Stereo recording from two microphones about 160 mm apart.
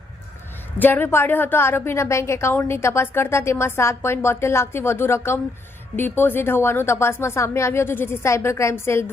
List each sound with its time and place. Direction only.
0.8 s a woman's voice: 10° left (ahead or behind)